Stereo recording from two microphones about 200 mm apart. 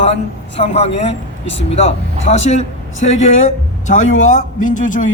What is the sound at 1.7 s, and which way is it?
A man's voice, 30° left (ahead or behind).